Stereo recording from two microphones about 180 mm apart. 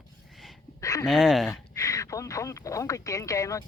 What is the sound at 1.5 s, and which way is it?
Speech, 15° left (ahead or behind).